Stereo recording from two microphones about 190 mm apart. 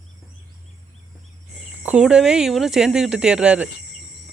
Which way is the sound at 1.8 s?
5° right (ahead or behind).